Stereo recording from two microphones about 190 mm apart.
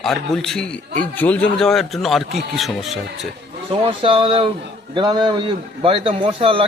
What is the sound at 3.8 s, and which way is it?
Speech, 30° right (ahead or behind).